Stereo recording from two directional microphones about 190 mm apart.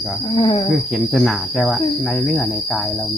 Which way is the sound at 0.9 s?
Centre (ahead or behind).